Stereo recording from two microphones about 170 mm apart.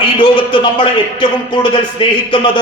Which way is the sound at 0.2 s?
30° left (ahead or behind).